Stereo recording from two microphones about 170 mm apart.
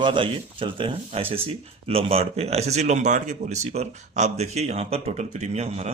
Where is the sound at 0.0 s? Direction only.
30° right (ahead or behind).